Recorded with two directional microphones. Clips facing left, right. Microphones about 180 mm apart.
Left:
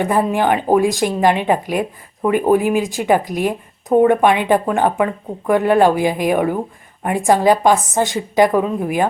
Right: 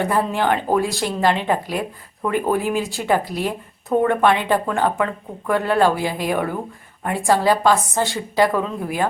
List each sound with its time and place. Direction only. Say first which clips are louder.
0.0 s speech: left 4 dB; 15° left (ahead or behind)